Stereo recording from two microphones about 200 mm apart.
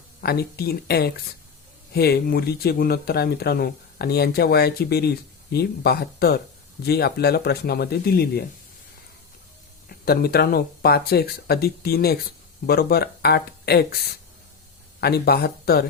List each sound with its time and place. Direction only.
0.2 s speech: 50° left (ahead or behind)
10.1 s speech: 50° left (ahead or behind)